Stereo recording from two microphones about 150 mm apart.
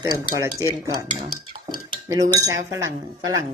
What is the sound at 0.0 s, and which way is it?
Speech, 25° right (ahead or behind).